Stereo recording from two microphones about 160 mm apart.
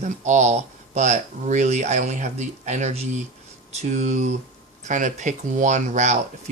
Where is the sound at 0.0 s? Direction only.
45° right (ahead or behind).